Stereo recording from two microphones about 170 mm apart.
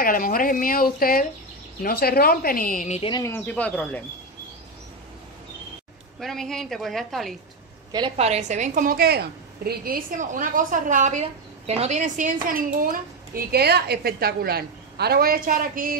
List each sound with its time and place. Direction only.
0.0 s speech: 55° left (ahead or behind)
3.1 s speech: 20° left (ahead or behind)
3.3 s speech: 10° left (ahead or behind)
6.1 s a woman's voice: centre (ahead or behind)
8.2 s a woman's voice: 40° right (ahead or behind)